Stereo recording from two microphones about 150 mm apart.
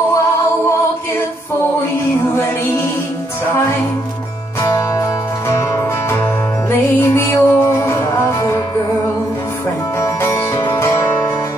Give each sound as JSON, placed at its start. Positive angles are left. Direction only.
{"t": 4.6, "sound": "music", "side_deg": 20}
{"t": 9.9, "sound": "music", "side_deg": 15}